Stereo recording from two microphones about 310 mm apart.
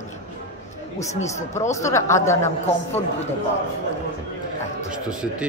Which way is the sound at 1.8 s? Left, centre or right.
Centre.